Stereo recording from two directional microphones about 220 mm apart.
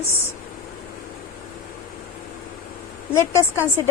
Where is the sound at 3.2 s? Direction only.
15° left (ahead or behind).